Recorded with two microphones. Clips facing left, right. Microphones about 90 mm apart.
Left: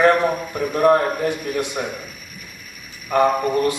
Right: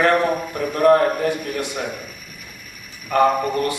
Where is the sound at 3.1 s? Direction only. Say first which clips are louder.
Even; 20° left (ahead or behind).